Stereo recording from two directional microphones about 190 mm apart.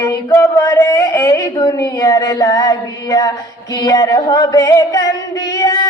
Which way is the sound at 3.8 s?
20° left (ahead or behind).